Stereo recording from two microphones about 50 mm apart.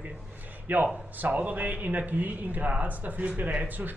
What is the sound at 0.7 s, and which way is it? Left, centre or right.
A man's voice, right.